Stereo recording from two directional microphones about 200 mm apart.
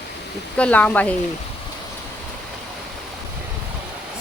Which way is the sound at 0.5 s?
5° left (ahead or behind).